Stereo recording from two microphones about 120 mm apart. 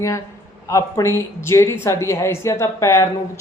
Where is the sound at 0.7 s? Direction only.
25° left (ahead or behind).